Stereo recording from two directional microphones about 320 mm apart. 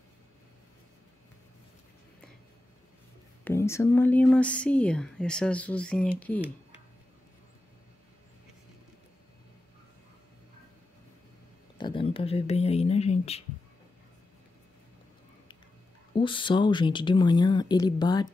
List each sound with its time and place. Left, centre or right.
3.4 s speech: centre
11.8 s speech: centre
16.2 s speech: centre